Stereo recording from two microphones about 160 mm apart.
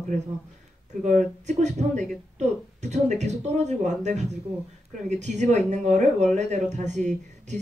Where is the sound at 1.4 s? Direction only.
45° right (ahead or behind).